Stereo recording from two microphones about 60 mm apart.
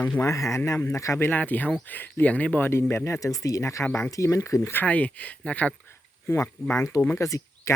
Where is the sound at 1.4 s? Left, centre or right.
Left.